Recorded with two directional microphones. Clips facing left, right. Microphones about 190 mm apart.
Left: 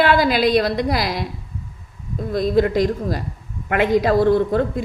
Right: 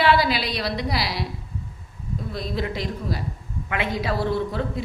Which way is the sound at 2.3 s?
45° left (ahead or behind).